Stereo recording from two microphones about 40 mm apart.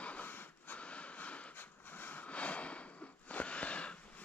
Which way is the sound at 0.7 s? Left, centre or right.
Left.